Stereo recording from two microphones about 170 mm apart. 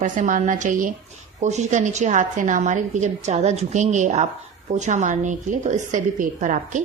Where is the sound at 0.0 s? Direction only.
50° right (ahead or behind).